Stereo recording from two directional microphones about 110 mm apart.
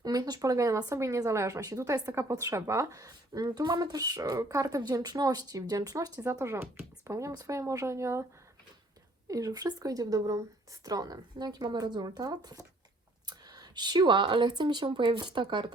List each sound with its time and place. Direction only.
0.0 s speech: 35° right (ahead or behind)
9.2 s speech: 35° right (ahead or behind)